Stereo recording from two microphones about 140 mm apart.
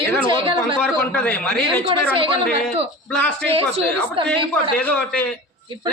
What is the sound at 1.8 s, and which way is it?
Speech, 40° right (ahead or behind).